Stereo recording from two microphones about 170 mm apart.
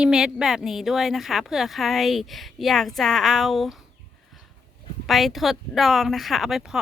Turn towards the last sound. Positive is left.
turn(degrees=0)  # may be behind; listen again after turning